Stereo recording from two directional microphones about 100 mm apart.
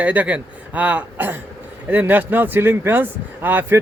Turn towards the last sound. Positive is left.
turn(degrees=-20)  # may be behind; listen again after turning